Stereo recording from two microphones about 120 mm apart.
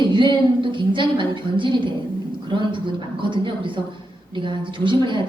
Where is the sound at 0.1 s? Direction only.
40° right (ahead or behind).